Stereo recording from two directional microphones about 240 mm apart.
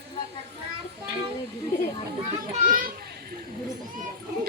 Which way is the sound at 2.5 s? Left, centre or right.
Right.